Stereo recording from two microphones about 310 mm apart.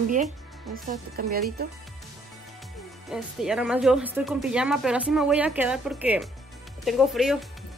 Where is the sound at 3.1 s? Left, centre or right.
Centre.